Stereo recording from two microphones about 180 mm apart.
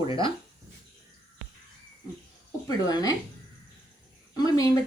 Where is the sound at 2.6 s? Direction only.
20° left (ahead or behind).